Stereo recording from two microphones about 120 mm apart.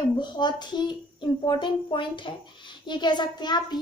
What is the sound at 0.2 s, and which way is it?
A child's voice, 35° left (ahead or behind).